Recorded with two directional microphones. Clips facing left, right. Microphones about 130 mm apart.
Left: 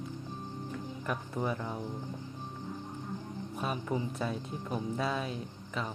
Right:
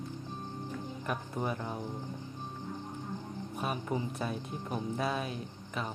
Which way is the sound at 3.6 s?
20° right (ahead or behind).